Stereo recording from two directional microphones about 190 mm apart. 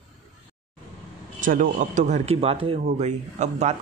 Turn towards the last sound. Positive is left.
turn(degrees=-35)  # may be behind; listen again after turning